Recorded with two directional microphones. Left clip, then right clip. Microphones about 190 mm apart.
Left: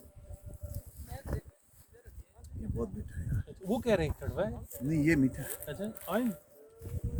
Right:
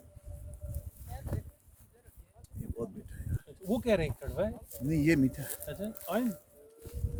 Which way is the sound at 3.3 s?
20° right (ahead or behind).